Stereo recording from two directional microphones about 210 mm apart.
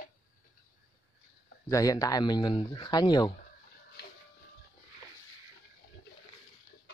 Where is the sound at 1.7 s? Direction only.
15° left (ahead or behind).